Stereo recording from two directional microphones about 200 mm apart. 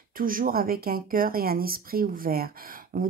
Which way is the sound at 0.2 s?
45° right (ahead or behind).